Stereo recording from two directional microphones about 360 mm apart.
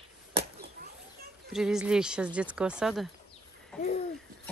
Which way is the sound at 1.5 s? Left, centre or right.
Centre.